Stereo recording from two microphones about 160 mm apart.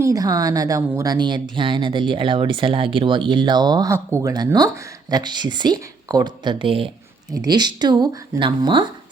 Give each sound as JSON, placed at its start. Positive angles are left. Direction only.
{"t": 0.0, "sound": "speech", "side_deg": -20}